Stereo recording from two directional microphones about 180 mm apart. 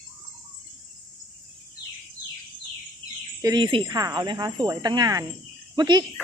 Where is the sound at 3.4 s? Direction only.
25° right (ahead or behind).